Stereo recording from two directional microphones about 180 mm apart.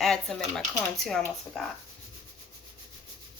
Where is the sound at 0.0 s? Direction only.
Centre (ahead or behind).